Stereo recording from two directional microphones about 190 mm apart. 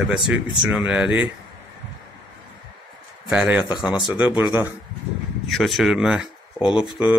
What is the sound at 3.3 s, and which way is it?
Speech, 5° right (ahead or behind).